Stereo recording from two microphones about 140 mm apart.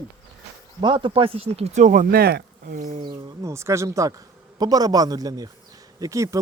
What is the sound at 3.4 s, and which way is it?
A man's voice, 20° right (ahead or behind).